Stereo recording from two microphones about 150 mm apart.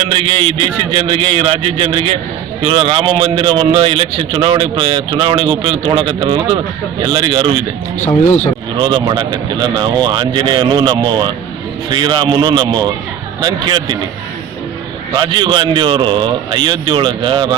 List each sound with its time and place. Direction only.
0.0 s a man's voice: 40° right (ahead or behind)
8.8 s speech: 30° right (ahead or behind)
15.1 s a man's voice: 30° right (ahead or behind)